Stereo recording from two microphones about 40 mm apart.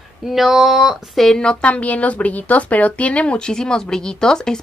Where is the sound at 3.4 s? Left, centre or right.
Centre.